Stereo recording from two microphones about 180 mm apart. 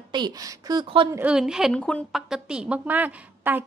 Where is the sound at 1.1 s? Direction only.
5° right (ahead or behind).